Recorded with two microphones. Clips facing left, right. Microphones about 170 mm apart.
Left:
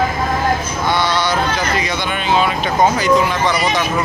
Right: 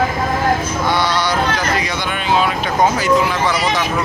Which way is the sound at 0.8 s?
10° right (ahead or behind).